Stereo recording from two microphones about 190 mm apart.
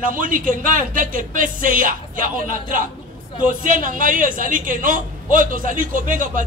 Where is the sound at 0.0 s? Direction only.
45° right (ahead or behind).